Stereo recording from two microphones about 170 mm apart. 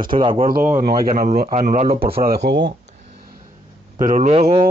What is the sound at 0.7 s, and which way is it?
Speech, 60° right (ahead or behind).